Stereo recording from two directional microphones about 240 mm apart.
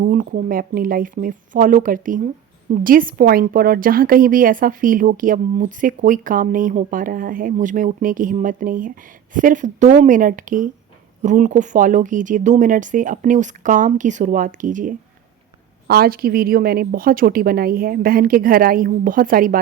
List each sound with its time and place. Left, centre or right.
0.0 s speech: right